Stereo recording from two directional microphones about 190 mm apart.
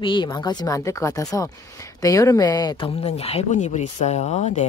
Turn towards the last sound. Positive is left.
turn(degrees=35)  # may be behind; listen again after turning